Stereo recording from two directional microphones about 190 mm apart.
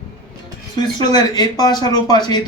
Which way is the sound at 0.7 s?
20° left (ahead or behind).